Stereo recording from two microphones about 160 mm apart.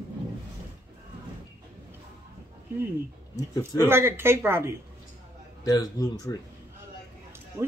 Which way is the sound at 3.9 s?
15° right (ahead or behind).